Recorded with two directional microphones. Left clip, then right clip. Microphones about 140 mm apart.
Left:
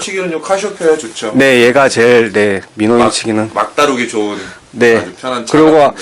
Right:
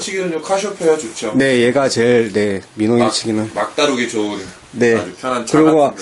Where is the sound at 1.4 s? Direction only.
20° right (ahead or behind).